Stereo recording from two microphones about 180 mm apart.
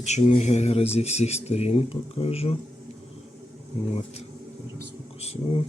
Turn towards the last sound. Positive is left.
turn(degrees=35)  # may be behind; listen again after turning